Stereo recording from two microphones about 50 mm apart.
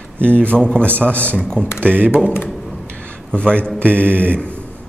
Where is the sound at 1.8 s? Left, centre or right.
Right.